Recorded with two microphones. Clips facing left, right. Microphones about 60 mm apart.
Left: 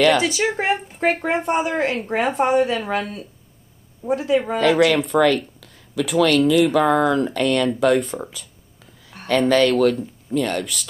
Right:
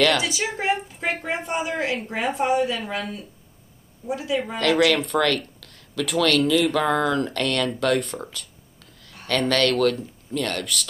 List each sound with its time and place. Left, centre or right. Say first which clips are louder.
0.2 s a woman's voice: left 5 dB; left
4.6 s speech: left 2 dB; centre